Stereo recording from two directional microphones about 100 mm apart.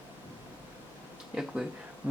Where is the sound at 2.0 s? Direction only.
15° right (ahead or behind).